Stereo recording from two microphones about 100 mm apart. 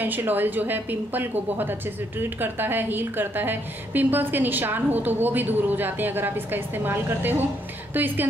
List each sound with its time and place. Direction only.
0.0 s a woman's voice: 20° right (ahead or behind)